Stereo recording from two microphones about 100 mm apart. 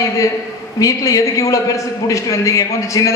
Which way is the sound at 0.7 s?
35° left (ahead or behind).